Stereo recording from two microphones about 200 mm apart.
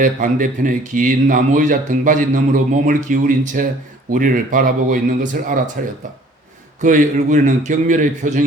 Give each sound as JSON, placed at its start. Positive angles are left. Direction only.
{"t": 0.0, "sound": "speech", "side_deg": -40}